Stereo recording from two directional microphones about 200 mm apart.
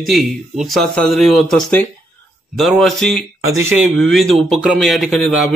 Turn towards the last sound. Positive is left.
turn(degrees=0)  # may be behind; listen again after turning